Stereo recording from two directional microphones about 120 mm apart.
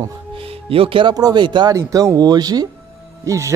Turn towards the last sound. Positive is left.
turn(degrees=-25)  # may be behind; listen again after turning